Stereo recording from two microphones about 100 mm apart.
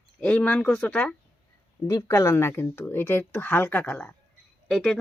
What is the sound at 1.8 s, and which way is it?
Speech, 35° left (ahead or behind).